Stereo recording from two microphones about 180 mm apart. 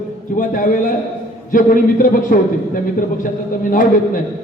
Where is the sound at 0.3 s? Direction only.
50° left (ahead or behind).